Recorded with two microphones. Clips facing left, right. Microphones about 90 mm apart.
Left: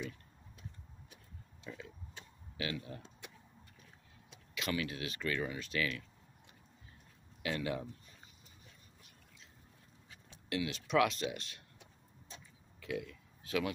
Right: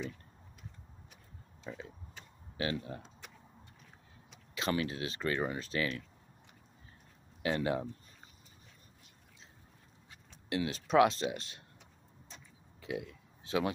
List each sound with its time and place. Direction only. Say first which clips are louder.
1.7 s speech: right 3 dB; 35° right (ahead or behind)
4.6 s speech: right 4 dB; 30° right (ahead or behind)
7.4 s speech: right 5 dB; 35° right (ahead or behind)
10.5 s speech: right 4 dB; 35° right (ahead or behind)
12.8 s a sound: right 1 dB; 25° right (ahead or behind)